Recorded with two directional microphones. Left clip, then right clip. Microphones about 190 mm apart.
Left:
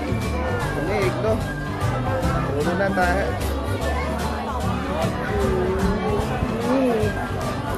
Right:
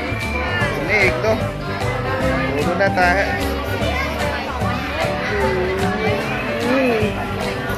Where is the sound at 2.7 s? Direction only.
5° right (ahead or behind).